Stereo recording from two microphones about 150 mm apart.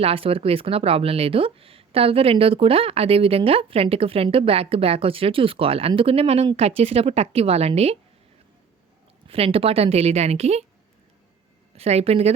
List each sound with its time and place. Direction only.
0.0 s speech: 40° right (ahead or behind)
9.2 s a woman's voice: 40° right (ahead or behind)
11.7 s a woman's voice: 45° right (ahead or behind)